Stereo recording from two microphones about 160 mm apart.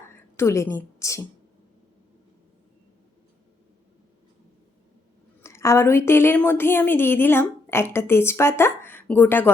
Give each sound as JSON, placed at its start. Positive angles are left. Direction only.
{"t": 0.1, "sound": "a woman's voice", "side_deg": 15}
{"t": 5.4, "sound": "a woman's voice", "side_deg": 15}